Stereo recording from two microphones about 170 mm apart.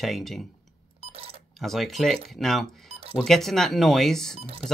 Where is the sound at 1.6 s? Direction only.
Centre (ahead or behind).